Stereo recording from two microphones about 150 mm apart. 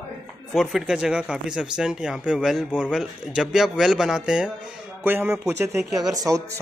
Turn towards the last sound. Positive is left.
turn(degrees=-25)  # may be behind; listen again after turning